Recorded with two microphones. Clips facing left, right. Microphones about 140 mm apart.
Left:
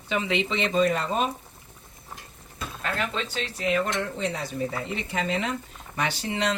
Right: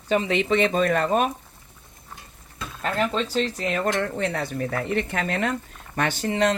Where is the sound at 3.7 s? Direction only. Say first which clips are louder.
Left 1 dB; 50° right (ahead or behind).